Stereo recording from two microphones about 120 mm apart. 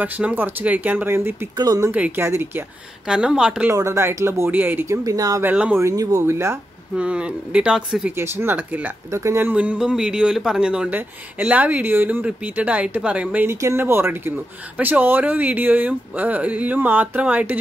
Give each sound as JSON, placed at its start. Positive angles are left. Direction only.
{"t": 0.0, "sound": "speech", "side_deg": -15}
{"t": 1.6, "sound": "speech", "side_deg": -35}
{"t": 1.9, "sound": "speech", "side_deg": -10}
{"t": 3.1, "sound": "speech", "side_deg": -5}
{"t": 3.7, "sound": "speech", "side_deg": -25}
{"t": 5.4, "sound": "speech", "side_deg": -10}
{"t": 5.8, "sound": "speech", "side_deg": -30}
{"t": 7.0, "sound": "speech", "side_deg": -10}
{"t": 8.2, "sound": "speech", "side_deg": -20}